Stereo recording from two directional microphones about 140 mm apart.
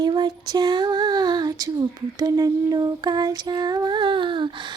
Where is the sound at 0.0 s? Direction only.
30° right (ahead or behind).